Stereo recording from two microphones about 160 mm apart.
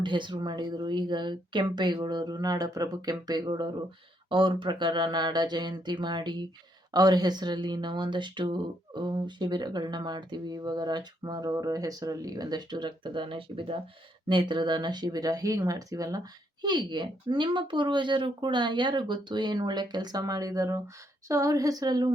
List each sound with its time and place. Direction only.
0.0 s speech: 30° right (ahead or behind)